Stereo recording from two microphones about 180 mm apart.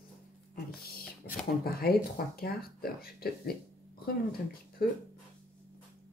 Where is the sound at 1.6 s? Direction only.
60° left (ahead or behind).